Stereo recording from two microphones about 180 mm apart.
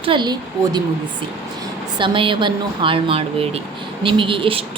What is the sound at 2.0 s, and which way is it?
A woman's voice, 30° right (ahead or behind).